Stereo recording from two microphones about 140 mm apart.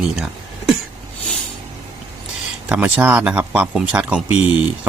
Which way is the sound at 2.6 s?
10° right (ahead or behind).